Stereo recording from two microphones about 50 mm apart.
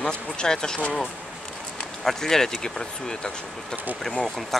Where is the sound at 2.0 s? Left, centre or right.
Centre.